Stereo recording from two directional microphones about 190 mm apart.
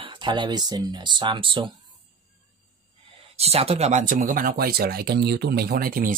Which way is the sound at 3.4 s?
30° right (ahead or behind).